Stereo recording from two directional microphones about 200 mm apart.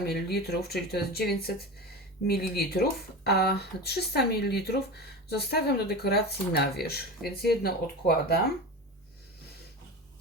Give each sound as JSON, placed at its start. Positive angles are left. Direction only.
{"t": 0.0, "sound": "speech", "side_deg": 55}